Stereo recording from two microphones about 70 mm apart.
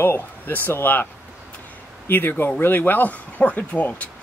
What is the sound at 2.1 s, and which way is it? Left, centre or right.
Speech, left.